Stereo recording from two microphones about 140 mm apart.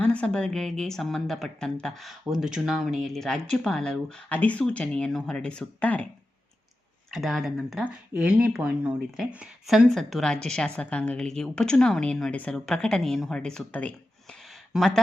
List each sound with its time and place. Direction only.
0.0 s speech: 10° left (ahead or behind)
7.1 s speech: centre (ahead or behind)